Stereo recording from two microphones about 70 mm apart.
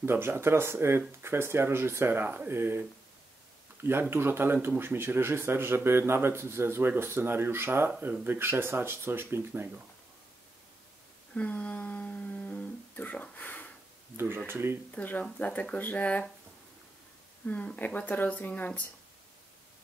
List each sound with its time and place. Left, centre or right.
0.0 s speech: right
4.1 s speech: right
11.3 s humming: centre
14.1 s speech: right
14.9 s speech: left
17.5 s speech: left